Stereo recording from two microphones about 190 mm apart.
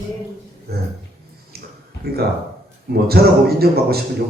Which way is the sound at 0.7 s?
55° right (ahead or behind).